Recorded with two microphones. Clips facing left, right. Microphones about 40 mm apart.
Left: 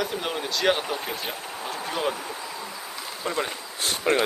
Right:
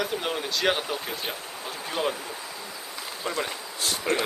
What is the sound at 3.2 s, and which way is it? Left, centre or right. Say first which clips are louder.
Speech: left 2 dB; centre.